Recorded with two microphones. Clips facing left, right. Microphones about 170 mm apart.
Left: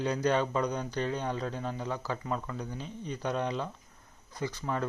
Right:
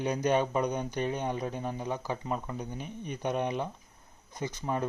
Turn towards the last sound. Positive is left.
turn(degrees=-20)  # may be behind; listen again after turning